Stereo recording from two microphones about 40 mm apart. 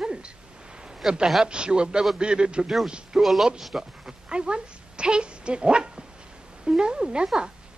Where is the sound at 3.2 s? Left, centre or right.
Centre.